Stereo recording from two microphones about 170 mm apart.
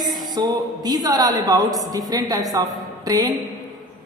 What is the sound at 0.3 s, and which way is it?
A woman's voice, 25° right (ahead or behind).